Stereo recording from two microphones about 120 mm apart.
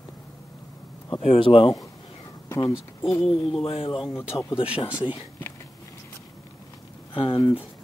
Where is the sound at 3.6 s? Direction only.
55° left (ahead or behind).